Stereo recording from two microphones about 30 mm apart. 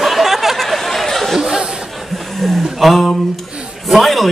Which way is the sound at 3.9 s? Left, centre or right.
Centre.